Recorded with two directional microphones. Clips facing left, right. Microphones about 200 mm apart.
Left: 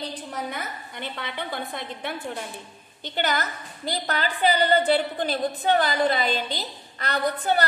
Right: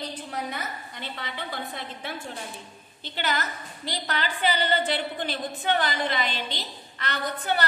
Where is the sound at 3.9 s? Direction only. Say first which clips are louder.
Left 3 dB; 40° left (ahead or behind).